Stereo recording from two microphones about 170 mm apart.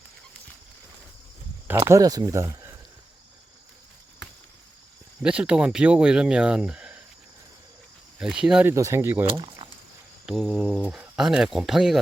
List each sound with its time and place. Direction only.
1.6 s speech: 15° right (ahead or behind)
5.2 s speech: 5° right (ahead or behind)
8.2 s speech: 5° right (ahead or behind)
8.7 s speech: 15° right (ahead or behind)
9.2 s speech: 25° right (ahead or behind)
10.2 s speech: centre (ahead or behind)